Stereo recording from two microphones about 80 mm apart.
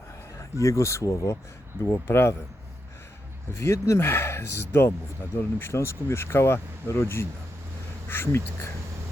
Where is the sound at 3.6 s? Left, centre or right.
Left.